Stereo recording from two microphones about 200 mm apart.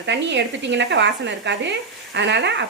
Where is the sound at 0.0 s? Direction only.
60° right (ahead or behind).